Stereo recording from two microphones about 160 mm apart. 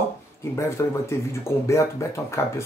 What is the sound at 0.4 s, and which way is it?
Speech, 20° left (ahead or behind).